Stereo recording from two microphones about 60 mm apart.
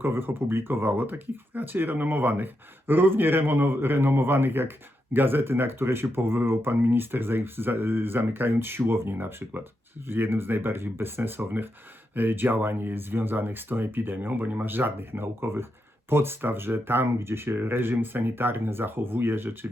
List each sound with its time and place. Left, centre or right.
0.0 s speech: right